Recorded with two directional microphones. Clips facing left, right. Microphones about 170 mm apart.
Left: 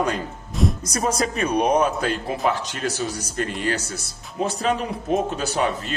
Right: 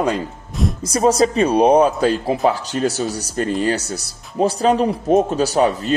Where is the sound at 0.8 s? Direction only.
30° right (ahead or behind).